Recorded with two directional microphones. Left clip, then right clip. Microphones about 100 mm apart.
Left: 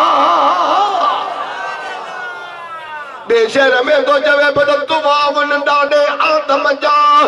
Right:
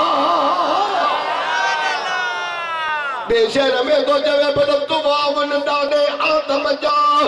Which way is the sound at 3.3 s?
40° left (ahead or behind).